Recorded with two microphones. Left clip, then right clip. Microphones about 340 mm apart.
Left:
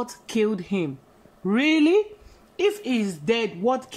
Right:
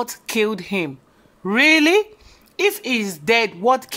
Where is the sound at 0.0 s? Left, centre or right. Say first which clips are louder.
Right 4 dB; centre.